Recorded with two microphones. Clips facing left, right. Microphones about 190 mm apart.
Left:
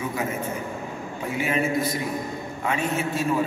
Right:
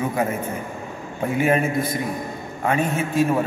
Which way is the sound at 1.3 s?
50° right (ahead or behind).